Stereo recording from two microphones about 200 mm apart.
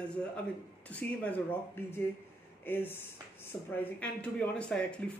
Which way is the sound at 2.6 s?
10° left (ahead or behind).